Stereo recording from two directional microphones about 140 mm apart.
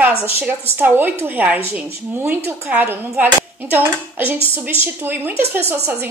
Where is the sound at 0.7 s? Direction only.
15° right (ahead or behind).